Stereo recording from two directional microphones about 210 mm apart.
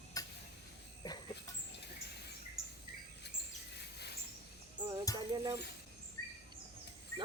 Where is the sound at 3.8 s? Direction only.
50° left (ahead or behind).